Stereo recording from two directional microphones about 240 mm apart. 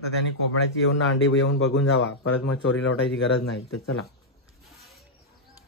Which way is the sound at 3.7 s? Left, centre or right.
Left.